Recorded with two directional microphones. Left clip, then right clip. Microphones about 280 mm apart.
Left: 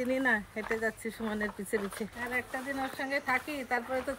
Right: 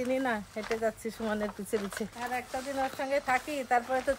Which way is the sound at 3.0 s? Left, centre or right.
Centre.